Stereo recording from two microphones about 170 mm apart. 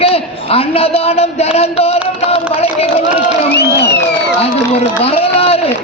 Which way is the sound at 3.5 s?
75° left (ahead or behind).